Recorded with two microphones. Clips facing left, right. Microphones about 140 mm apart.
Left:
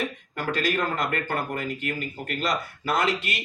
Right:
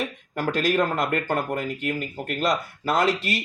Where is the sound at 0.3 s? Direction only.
50° right (ahead or behind).